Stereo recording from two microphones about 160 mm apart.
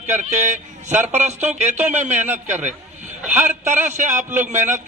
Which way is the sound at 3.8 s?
50° right (ahead or behind).